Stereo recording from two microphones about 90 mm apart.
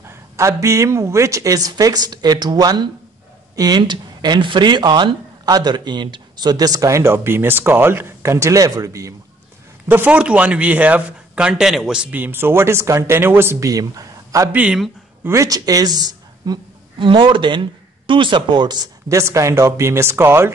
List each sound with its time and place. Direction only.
0.0 s speech: 30° right (ahead or behind)
9.8 s speech: 20° right (ahead or behind)
12.2 s speech: 25° right (ahead or behind)
13.7 s speech: 40° right (ahead or behind)
14.5 s speech: 15° right (ahead or behind)
15.2 s a woman's voice: 35° right (ahead or behind)
17.0 s speech: 70° right (ahead or behind); by 18.9 s 55° right (ahead or behind)
19.0 s speech: 35° right (ahead or behind)